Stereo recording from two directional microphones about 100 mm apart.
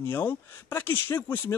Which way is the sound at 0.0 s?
25° left (ahead or behind).